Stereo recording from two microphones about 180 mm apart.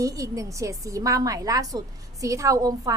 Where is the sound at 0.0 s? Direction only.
20° right (ahead or behind).